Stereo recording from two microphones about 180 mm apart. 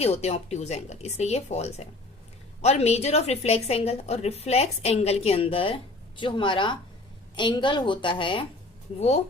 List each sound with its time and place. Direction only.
0.0 s a woman's voice: 35° left (ahead or behind)